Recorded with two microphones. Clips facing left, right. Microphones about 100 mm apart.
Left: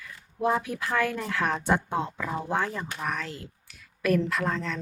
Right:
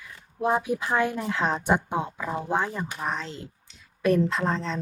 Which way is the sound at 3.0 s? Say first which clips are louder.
Even; 25° right (ahead or behind).